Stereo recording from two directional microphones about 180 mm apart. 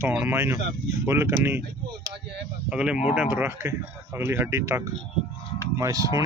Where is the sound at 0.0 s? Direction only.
10° right (ahead or behind).